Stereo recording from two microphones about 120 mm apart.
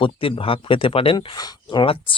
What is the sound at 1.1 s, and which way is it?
Speech, 35° left (ahead or behind).